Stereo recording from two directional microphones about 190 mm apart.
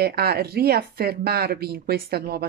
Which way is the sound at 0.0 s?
55° right (ahead or behind).